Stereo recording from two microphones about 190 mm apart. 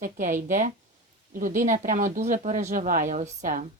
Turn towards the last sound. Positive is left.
turn(degrees=-45)  # may be behind; listen again after turning